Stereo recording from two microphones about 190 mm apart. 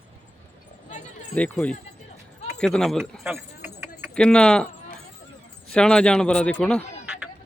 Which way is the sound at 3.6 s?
10° right (ahead or behind).